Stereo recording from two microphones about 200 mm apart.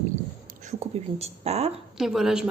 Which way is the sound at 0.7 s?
30° right (ahead or behind).